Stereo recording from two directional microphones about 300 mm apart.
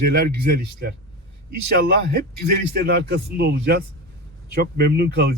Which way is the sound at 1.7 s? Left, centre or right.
Right.